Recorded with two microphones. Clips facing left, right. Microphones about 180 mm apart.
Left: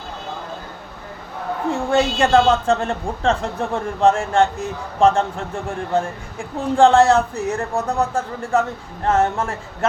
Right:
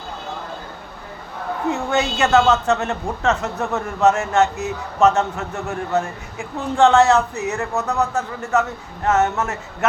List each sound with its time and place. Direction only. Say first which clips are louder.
1.7 s a woman's voice: left 4 dB; 30° left (ahead or behind)